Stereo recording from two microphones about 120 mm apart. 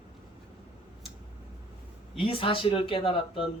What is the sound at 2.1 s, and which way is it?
Speech, 45° left (ahead or behind).